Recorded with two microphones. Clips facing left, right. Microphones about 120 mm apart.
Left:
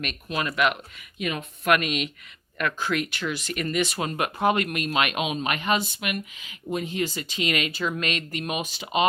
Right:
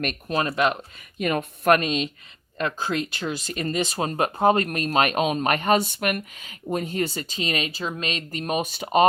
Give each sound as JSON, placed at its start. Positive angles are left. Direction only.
{"t": 0.0, "sound": "speech", "side_deg": -40}
{"t": 1.2, "sound": "speech", "side_deg": -45}